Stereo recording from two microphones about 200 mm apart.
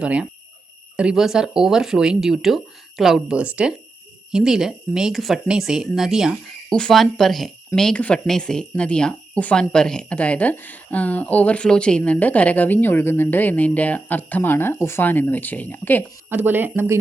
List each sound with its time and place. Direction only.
0.0 s speech: 5° right (ahead or behind); by 16.0 s 10° left (ahead or behind)
16.3 s speech: 10° right (ahead or behind)